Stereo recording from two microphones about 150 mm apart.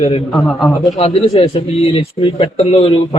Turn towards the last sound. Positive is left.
turn(degrees=40)  # may be behind; listen again after turning